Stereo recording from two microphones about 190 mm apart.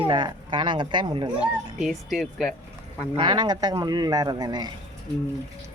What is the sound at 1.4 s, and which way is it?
Speech, centre (ahead or behind).